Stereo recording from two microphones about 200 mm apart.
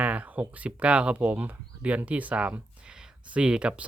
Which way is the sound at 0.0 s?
5° right (ahead or behind).